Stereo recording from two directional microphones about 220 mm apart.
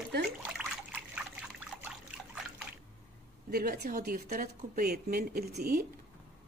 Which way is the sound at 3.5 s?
40° right (ahead or behind).